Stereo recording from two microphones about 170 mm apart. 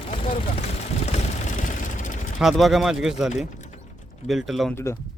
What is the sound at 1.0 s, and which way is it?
Vehicle, 45° left (ahead or behind).